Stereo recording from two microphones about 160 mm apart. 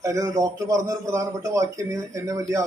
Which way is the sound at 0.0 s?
20° right (ahead or behind).